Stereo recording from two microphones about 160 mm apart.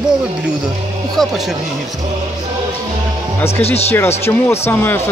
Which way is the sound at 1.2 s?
Centre (ahead or behind).